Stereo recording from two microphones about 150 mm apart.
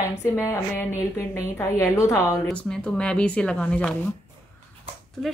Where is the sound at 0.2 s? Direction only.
15° left (ahead or behind).